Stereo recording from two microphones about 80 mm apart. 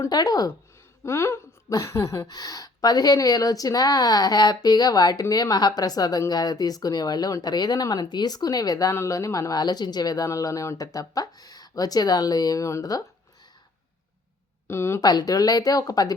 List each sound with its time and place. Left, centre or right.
0.1 s a woman's voice: left
1.0 s a sound: left
2.3 s a woman's voice: left
10.2 s a woman's voice: left
14.7 s a sound: left
15.0 s a woman's voice: left